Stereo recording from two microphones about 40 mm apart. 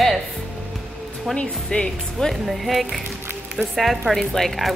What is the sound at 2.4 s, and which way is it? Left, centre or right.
Speech, centre.